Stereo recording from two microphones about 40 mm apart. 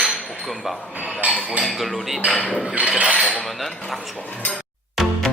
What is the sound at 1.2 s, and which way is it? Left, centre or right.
Cutlery, right.